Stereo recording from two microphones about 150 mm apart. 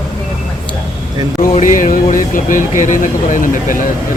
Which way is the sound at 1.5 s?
60° left (ahead or behind).